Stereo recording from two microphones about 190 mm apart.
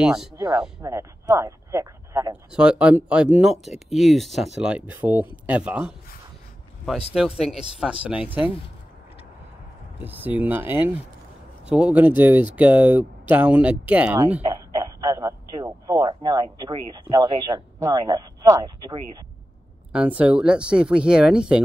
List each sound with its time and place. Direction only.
0.0 s speech: 5° right (ahead or behind)
0.8 s speech: 15° right (ahead or behind)
2.5 s speech: 5° right (ahead or behind)
7.2 s speech: centre (ahead or behind)
9.9 s speech: 10° right (ahead or behind)
14.5 s speech: 20° right (ahead or behind)
19.9 s speech: 5° right (ahead or behind)